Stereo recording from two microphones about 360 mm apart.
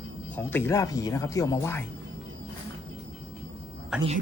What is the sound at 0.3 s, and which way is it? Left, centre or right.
Speech, centre.